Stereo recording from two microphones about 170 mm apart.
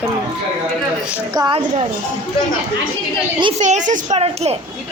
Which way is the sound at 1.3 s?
25° right (ahead or behind).